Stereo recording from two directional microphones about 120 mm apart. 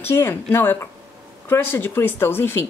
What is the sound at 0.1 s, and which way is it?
A woman's voice, 20° left (ahead or behind).